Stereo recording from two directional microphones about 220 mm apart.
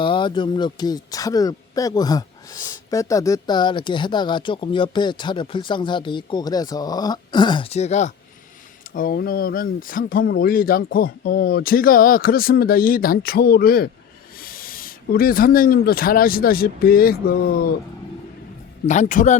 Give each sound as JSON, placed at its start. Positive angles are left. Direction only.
{"t": 0.0, "sound": "speech", "side_deg": 20}
{"t": 18.9, "sound": "speech", "side_deg": 35}